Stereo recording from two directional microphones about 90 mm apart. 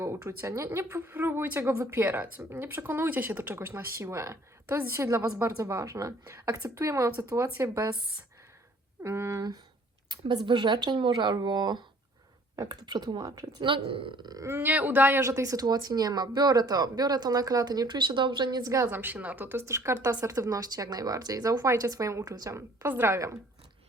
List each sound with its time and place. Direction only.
0.0 s speech: 30° right (ahead or behind)
9.0 s speech: 30° right (ahead or behind)
10.1 s a woman's voice: 60° right (ahead or behind)
13.7 s speech: 75° right (ahead or behind)
14.4 s speech: 25° right (ahead or behind)
15.2 s speech: 35° right (ahead or behind); by 18.7 s 55° right (ahead or behind)
18.9 s speech: 20° right (ahead or behind)